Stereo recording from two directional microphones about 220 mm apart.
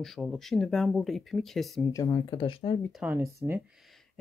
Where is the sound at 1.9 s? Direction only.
20° left (ahead or behind).